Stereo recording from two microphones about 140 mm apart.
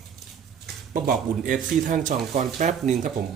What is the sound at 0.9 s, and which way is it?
Speech, 75° right (ahead or behind).